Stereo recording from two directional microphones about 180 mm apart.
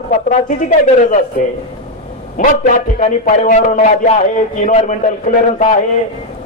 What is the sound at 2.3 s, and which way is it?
A man's voice, 45° left (ahead or behind).